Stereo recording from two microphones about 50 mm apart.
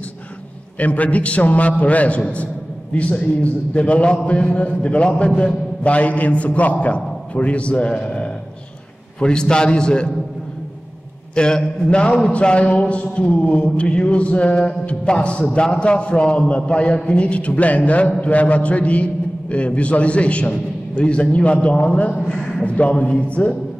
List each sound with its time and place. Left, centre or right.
0.7 s a man's voice: left
8.0 s a sound: centre
9.2 s a man's voice: centre
11.3 s a man's voice: centre
22.3 s a man's voice: centre
22.7 s a man's voice: left